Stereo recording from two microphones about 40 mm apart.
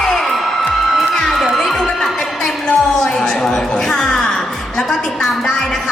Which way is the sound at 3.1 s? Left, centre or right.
Centre.